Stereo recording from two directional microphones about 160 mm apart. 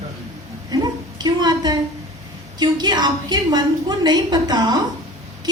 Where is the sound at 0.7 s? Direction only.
25° right (ahead or behind).